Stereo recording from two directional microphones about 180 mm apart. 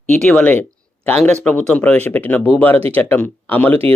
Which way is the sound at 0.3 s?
5° left (ahead or behind).